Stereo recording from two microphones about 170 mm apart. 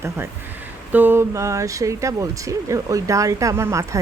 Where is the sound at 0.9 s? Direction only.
10° right (ahead or behind).